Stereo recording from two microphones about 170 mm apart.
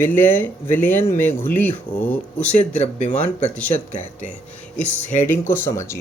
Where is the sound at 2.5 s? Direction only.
45° left (ahead or behind).